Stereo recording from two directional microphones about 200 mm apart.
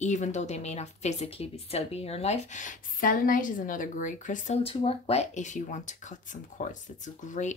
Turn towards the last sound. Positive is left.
turn(degrees=40)  # may be behind; listen again after turning